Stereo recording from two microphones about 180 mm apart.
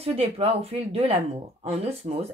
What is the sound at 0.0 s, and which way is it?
Speech, 35° right (ahead or behind).